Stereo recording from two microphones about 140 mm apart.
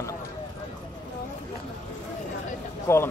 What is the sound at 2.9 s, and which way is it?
Speech, 20° left (ahead or behind).